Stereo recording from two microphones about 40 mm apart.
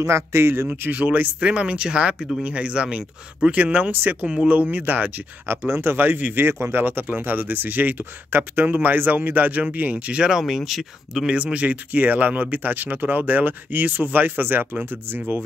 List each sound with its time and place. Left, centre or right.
0.4 s speech: right
0.9 s speech: right
1.4 s speech: right
5.5 s speech: right
5.9 s speech: right
6.4 s speech: right
8.0 s speech: right
10.4 s speech: centre
11.2 s speech: right